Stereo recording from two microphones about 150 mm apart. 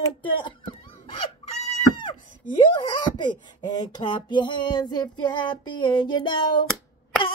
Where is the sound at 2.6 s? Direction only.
30° left (ahead or behind).